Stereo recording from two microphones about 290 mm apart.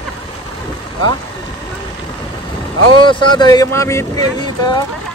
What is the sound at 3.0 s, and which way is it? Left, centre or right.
Speech, centre.